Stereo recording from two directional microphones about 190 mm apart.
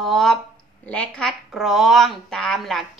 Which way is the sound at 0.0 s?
Centre (ahead or behind).